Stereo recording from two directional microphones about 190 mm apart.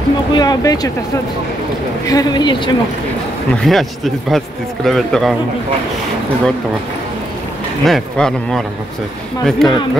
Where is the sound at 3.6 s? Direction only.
Centre (ahead or behind).